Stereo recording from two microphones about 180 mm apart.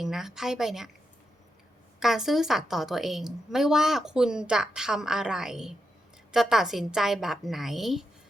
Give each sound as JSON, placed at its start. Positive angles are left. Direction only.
{"t": 0.0, "sound": "speech", "side_deg": 0}
{"t": 2.0, "sound": "a woman's voice", "side_deg": 0}